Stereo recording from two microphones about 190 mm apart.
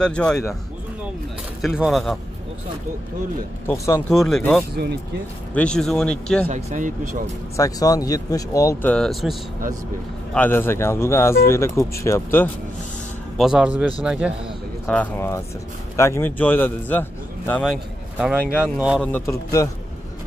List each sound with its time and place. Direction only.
0.0 s a man's voice: 5° left (ahead or behind)
1.6 s a man's voice: centre (ahead or behind)
3.6 s speech: 15° left (ahead or behind)
4.1 s a man's voice: centre (ahead or behind)
6.5 s speech: 40° right (ahead or behind)
7.5 s speech: 20° left (ahead or behind)
8.9 s a man's voice: centre (ahead or behind)
10.3 s speech: 10° left (ahead or behind)
13.4 s a man's voice: 5° right (ahead or behind)
14.9 s speech: 10° left (ahead or behind)
18.1 s a man's voice: 5° right (ahead or behind)
19.1 s speech: 15° left (ahead or behind)